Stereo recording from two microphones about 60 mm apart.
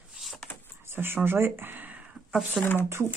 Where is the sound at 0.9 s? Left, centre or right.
Right.